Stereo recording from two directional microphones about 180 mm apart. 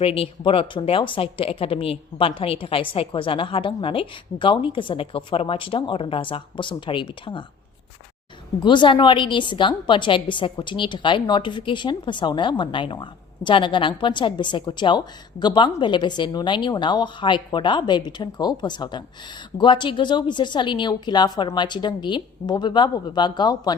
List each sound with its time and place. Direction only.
0.0 s a woman's voice: 30° left (ahead or behind)
8.6 s a woman's voice: 25° left (ahead or behind)